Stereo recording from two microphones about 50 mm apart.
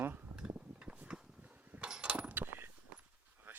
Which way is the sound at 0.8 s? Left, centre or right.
Right.